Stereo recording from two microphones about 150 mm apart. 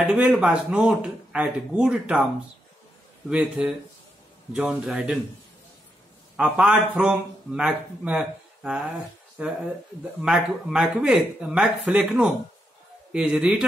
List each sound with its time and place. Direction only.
0.0 s speech: 5° right (ahead or behind)
3.3 s speech: 5° right (ahead or behind)
6.3 s a man's voice: 5° right (ahead or behind)